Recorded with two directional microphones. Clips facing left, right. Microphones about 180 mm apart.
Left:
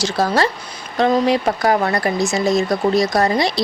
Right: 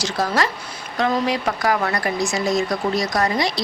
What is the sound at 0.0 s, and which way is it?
Speech, 30° left (ahead or behind).